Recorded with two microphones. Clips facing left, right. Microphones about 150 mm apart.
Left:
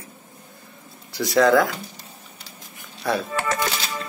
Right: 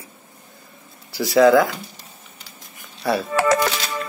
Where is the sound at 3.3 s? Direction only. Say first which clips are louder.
Right 7 dB; 90° right.